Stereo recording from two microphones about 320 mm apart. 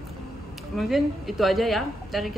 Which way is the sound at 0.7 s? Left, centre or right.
Centre.